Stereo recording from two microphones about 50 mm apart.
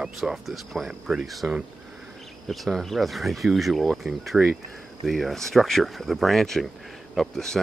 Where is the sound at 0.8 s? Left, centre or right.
Centre.